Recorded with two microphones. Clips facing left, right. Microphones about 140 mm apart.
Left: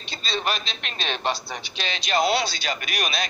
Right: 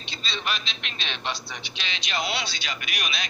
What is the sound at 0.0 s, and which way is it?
A man's voice, 40° left (ahead or behind).